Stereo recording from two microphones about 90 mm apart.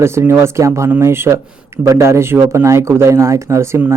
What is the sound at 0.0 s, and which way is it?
A man's voice, 30° right (ahead or behind).